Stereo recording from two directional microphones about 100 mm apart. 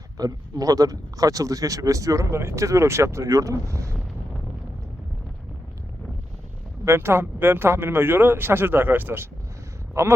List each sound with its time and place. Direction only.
0.2 s speech: 40° right (ahead or behind)
6.8 s speech: 25° right (ahead or behind)